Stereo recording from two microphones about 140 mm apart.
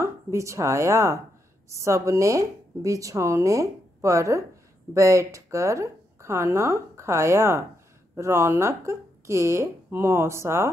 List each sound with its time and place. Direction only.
0.0 s a woman's voice: 20° right (ahead or behind)